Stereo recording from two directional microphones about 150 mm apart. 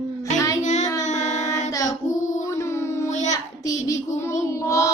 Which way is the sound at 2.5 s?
20° left (ahead or behind).